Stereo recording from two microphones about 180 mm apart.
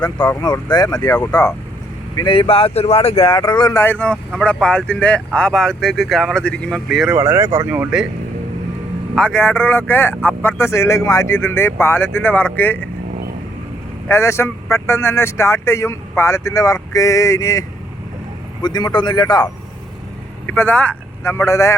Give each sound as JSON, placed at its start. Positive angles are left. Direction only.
{"t": 0.4, "sound": "speech", "side_deg": 25}
{"t": 1.1, "sound": "speech", "side_deg": 10}
{"t": 2.1, "sound": "speech", "side_deg": 25}
{"t": 7.1, "sound": "speech", "side_deg": -15}
{"t": 9.1, "sound": "speech", "side_deg": 5}
{"t": 14.1, "sound": "speech", "side_deg": 15}
{"t": 20.5, "sound": "speech", "side_deg": 10}